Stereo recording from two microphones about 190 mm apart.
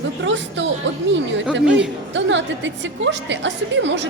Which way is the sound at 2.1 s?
75° right (ahead or behind).